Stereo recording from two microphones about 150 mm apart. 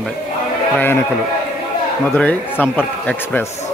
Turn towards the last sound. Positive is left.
turn(degrees=10)  # may be behind; listen again after turning